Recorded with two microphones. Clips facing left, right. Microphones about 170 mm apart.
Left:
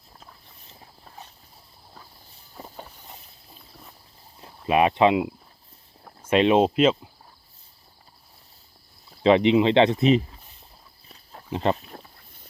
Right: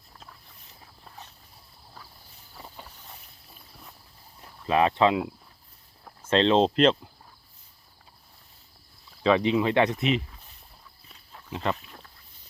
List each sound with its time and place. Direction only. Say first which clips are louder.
2.6 s vehicle: left 4 dB; 40° left (ahead or behind)
4.4 s speech: left 3 dB; 15° left (ahead or behind)
9.2 s speech: left 5 dB; 20° left (ahead or behind)
10.0 s speech: left 7 dB; 35° left (ahead or behind)
11.1 s a sound: left 6 dB; 40° left (ahead or behind)